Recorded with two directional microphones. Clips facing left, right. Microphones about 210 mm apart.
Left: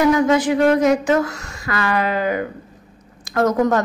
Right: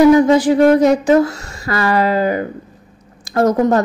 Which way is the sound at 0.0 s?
35° right (ahead or behind).